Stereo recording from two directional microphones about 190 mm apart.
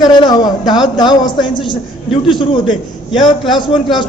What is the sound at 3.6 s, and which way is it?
Speech, 25° left (ahead or behind).